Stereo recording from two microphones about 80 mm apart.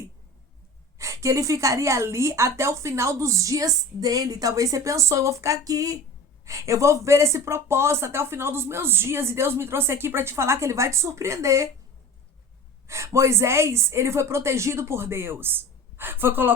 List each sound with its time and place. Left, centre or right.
0.9 s speech: right
12.9 s speech: right